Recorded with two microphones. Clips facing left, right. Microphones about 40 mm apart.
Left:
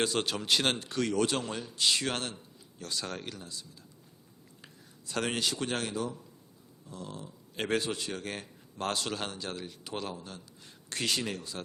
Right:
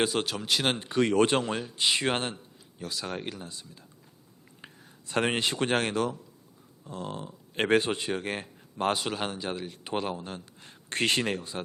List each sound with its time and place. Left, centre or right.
0.0 s speech: centre
0.8 s speech: right
3.4 s speech: right
6.8 s speech: right